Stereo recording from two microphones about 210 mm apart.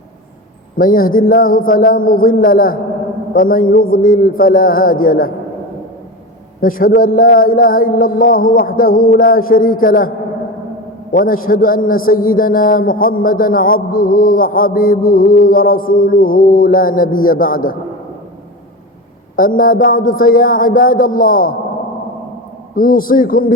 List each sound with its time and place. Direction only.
0.8 s a man's voice: 40° left (ahead or behind)
6.6 s a man's voice: 40° left (ahead or behind)
11.1 s a man's voice: 40° left (ahead or behind)
19.4 s a man's voice: 40° left (ahead or behind)
22.7 s a man's voice: 40° left (ahead or behind)